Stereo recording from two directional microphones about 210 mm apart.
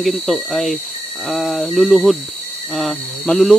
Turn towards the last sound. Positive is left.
turn(degrees=0)  # may be behind; listen again after turning